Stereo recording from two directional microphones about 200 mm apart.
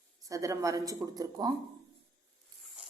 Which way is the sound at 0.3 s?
15° right (ahead or behind).